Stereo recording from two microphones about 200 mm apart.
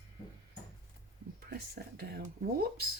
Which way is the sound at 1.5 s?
55° right (ahead or behind).